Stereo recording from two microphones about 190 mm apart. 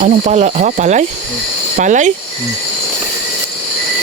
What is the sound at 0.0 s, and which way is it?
Speech, 40° right (ahead or behind).